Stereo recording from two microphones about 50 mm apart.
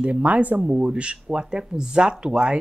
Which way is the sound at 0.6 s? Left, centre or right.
Centre.